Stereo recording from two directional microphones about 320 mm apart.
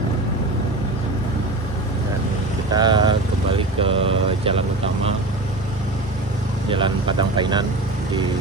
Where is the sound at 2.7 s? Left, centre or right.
Centre.